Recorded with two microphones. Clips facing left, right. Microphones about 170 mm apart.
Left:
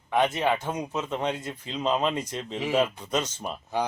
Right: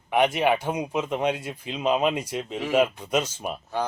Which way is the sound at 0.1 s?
10° right (ahead or behind).